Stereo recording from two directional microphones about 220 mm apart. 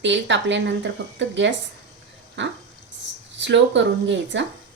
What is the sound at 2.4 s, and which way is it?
Speech, 55° right (ahead or behind).